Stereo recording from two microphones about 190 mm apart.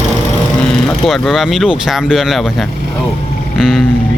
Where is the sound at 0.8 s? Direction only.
Centre (ahead or behind).